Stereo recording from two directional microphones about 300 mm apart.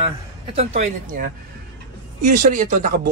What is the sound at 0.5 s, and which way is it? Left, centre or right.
Speech, right.